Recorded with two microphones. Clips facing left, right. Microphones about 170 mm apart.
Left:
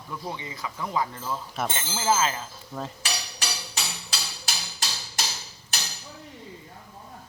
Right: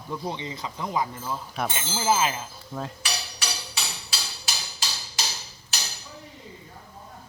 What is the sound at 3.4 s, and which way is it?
Music, 45° left (ahead or behind).